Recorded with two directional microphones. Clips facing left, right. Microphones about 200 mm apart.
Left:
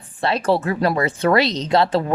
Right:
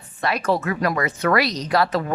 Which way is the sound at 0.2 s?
30° left (ahead or behind).